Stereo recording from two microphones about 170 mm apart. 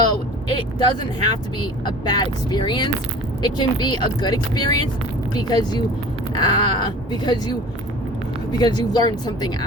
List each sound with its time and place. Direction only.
0.8 s speech: 25° left (ahead or behind)
8.5 s speech: 25° left (ahead or behind)